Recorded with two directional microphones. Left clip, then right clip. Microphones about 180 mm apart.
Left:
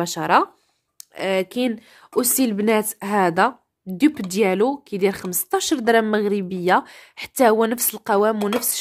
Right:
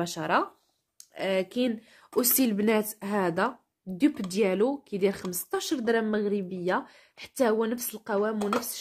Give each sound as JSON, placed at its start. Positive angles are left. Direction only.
{"t": 0.0, "sound": "speech", "side_deg": 35}
{"t": 2.1, "sound": "a woman's voice", "side_deg": 20}